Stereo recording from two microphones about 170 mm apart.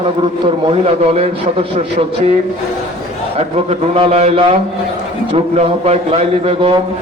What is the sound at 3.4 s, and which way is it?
A man's voice, 35° right (ahead or behind).